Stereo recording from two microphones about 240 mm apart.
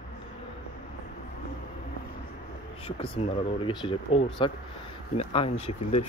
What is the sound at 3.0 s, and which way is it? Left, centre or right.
Speech, left.